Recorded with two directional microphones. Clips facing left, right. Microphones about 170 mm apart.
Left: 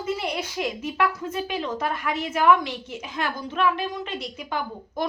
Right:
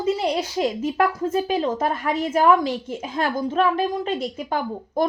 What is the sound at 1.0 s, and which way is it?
A woman's voice, 45° right (ahead or behind).